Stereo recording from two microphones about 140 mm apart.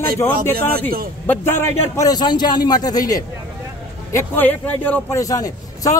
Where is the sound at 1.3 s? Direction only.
15° left (ahead or behind).